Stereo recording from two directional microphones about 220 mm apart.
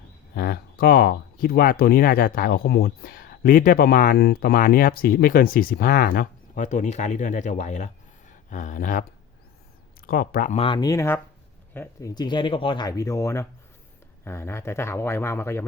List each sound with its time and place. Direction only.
0.3 s speech: 40° left (ahead or behind)
10.1 s speech: 40° left (ahead or behind)
10.5 s speech: 25° left (ahead or behind)